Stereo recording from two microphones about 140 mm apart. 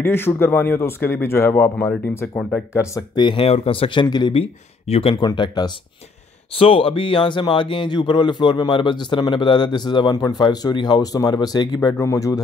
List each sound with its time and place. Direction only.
0.0 s speech: 15° left (ahead or behind)
3.2 s speech: 35° left (ahead or behind)
4.4 s speech: 45° left (ahead or behind)
5.1 s speech: 30° left (ahead or behind)